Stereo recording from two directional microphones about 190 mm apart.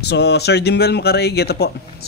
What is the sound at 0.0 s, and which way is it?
Speech, 60° left (ahead or behind).